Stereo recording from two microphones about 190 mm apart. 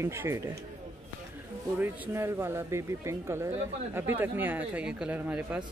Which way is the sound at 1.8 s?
10° right (ahead or behind).